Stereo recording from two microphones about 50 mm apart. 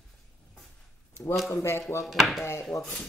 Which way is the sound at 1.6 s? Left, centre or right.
Left.